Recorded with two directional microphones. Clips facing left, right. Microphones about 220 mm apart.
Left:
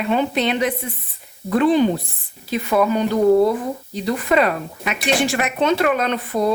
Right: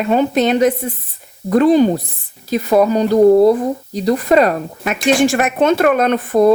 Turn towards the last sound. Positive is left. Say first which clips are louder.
# right 8 dB
turn(degrees=-50)  # may be behind; listen again after turning